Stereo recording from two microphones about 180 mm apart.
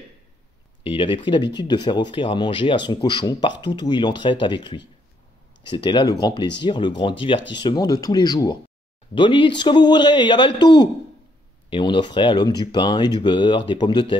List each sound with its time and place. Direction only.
0.8 s speech: 30° left (ahead or behind)